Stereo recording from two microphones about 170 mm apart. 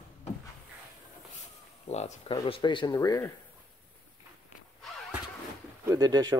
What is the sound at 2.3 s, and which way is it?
Speech, 30° left (ahead or behind).